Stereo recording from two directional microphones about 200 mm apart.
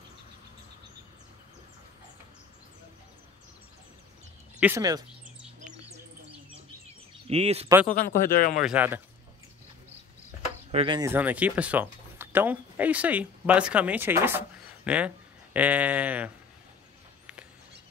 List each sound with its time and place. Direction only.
4.6 s speech: 10° right (ahead or behind)
5.6 s bird: 40° right (ahead or behind)
7.2 s speech: 30° right (ahead or behind)
7.9 s speech: 45° left (ahead or behind)
8.6 s speech: 10° right (ahead or behind)
10.7 s speech: 30° right (ahead or behind)
11.0 s speech: 10° right (ahead or behind)